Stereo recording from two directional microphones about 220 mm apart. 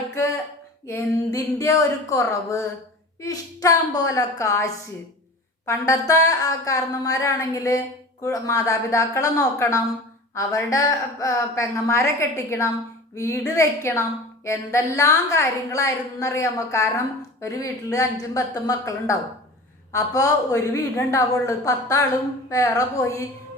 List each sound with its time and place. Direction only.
0.9 s a woman's voice: 15° left (ahead or behind)